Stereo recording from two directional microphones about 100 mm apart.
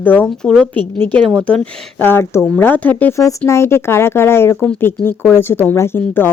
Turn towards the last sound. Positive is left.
turn(degrees=20)  # may be behind; listen again after turning